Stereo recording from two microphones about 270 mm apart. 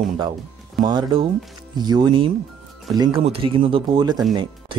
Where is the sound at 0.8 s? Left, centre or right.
Centre.